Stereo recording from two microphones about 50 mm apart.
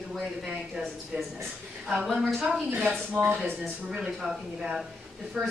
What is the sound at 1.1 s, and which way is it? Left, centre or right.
Speech, right.